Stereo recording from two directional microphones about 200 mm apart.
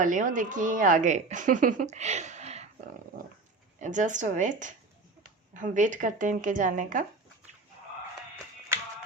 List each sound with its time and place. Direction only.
0.0 s speech: 40° right (ahead or behind)
3.8 s speech: 40° right (ahead or behind)